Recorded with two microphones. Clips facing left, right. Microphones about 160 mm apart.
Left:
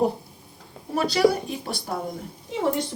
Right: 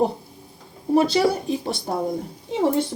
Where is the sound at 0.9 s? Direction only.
25° right (ahead or behind).